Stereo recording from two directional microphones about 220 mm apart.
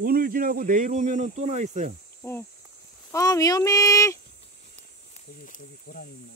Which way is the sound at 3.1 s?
15° left (ahead or behind).